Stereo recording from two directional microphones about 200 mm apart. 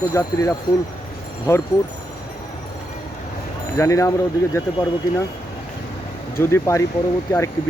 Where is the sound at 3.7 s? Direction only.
15° left (ahead or behind).